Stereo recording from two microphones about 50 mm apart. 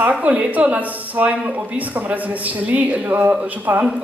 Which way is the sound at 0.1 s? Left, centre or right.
Right.